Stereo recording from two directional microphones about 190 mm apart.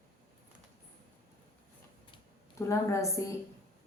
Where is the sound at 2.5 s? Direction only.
15° left (ahead or behind).